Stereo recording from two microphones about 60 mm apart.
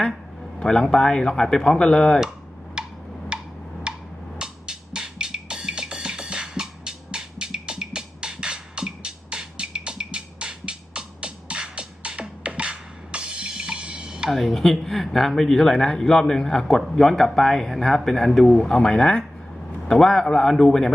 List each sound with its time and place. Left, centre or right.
0.6 s speech: centre
2.8 s a sound: centre
4.4 s music: centre
14.3 s speech: centre